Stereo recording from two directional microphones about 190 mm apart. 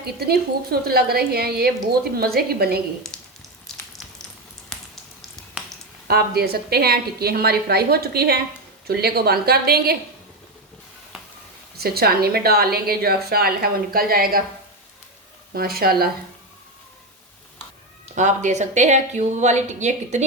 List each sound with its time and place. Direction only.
0.0 s a woman's voice: 55° right (ahead or behind)
3.1 s a sound: 5° left (ahead or behind)
3.7 s frying: 5° left (ahead or behind)
6.1 s a woman's voice: 55° right (ahead or behind)
11.8 s a woman's voice: 55° right (ahead or behind)
15.5 s a woman's voice: 55° right (ahead or behind)
18.1 s a woman's voice: 40° right (ahead or behind)